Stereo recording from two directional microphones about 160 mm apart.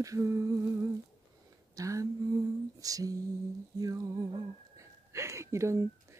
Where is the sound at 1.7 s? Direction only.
20° right (ahead or behind).